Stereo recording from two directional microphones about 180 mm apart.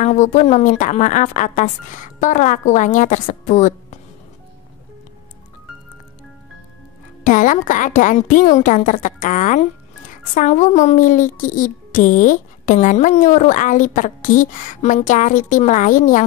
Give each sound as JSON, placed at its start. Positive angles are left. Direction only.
{"t": 0.0, "sound": "speech", "side_deg": 40}
{"t": 7.2, "sound": "speech", "side_deg": 45}